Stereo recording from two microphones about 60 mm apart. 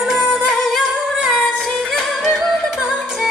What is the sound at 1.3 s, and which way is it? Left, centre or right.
Music, centre.